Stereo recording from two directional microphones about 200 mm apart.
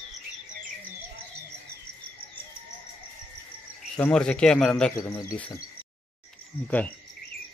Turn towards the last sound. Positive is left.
turn(degrees=5)  # may be behind; listen again after turning